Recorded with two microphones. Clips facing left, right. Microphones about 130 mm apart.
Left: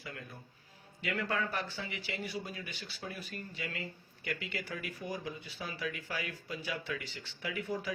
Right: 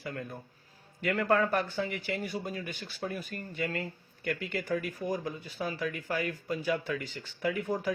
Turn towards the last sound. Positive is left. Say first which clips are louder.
# right 6 dB
turn(degrees=-45)  # may be behind; listen again after turning